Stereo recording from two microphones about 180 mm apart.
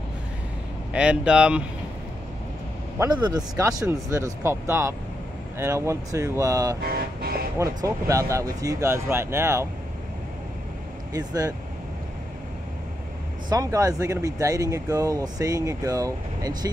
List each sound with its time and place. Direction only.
0.9 s speech: 5° right (ahead or behind)
3.0 s speech: 25° right (ahead or behind)
6.8 s speech: 60° right (ahead or behind)
7.5 s speech: 15° right (ahead or behind)
11.1 s speech: 20° right (ahead or behind)
13.5 s speech: 20° right (ahead or behind)